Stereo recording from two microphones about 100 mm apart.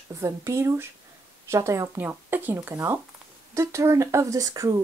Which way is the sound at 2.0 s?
20° right (ahead or behind).